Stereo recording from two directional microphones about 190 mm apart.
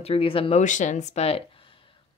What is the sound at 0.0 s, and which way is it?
A woman's voice, 30° left (ahead or behind).